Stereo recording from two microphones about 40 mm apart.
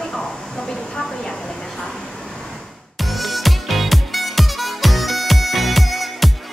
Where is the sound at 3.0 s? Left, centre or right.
Centre.